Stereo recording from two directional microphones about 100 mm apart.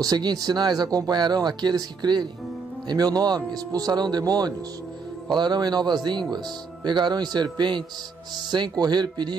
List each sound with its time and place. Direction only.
0.0 s speech: 40° right (ahead or behind)